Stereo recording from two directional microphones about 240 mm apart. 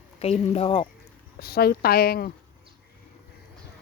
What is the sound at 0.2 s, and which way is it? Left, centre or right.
Speech, left.